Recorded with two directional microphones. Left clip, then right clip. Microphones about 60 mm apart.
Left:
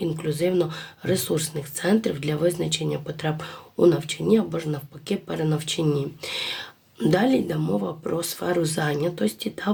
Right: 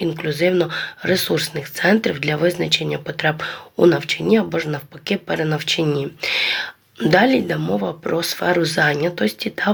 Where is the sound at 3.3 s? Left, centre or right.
Left.